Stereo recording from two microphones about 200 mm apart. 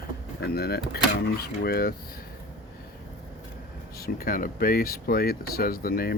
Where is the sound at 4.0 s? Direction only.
50° left (ahead or behind).